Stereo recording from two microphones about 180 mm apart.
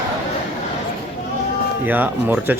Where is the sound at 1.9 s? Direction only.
10° right (ahead or behind).